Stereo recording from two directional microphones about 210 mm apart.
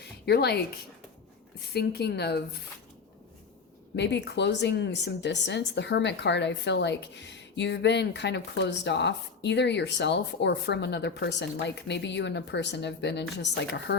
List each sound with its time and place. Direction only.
0.0 s a sound: 50° left (ahead or behind)
1.7 s a woman's voice: 50° left (ahead or behind)
3.9 s speech: 55° left (ahead or behind)